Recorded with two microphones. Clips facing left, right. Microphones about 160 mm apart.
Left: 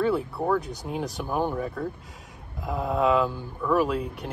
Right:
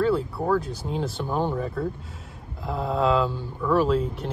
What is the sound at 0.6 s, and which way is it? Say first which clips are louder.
Speech: right 2 dB; 15° left (ahead or behind).